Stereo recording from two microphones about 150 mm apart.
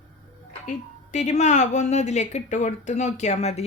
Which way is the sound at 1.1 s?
50° left (ahead or behind).